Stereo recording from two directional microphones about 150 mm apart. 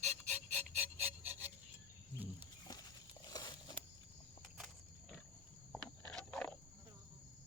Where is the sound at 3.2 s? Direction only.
25° left (ahead or behind).